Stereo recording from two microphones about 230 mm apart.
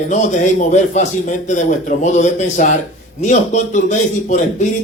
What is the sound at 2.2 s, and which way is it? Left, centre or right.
A man's voice, left.